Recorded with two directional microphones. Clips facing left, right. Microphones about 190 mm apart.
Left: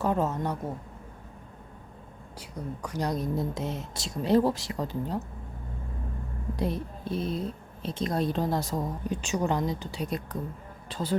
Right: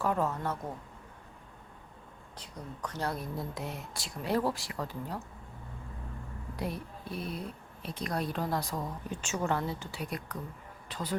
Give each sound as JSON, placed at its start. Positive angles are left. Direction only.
{"t": 0.0, "sound": "a woman's voice", "side_deg": 20}
{"t": 2.4, "sound": "a woman's voice", "side_deg": 10}
{"t": 6.6, "sound": "a woman's voice", "side_deg": 20}